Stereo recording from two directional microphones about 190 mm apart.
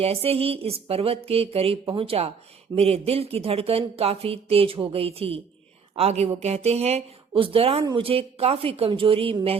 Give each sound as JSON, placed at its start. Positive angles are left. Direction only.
{"t": 0.0, "sound": "a woman's voice", "side_deg": -30}